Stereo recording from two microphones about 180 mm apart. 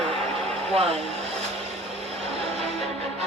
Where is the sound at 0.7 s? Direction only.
35° right (ahead or behind).